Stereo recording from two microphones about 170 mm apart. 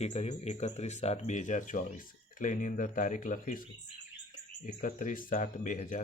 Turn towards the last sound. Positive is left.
turn(degrees=50)  # may be behind; listen again after turning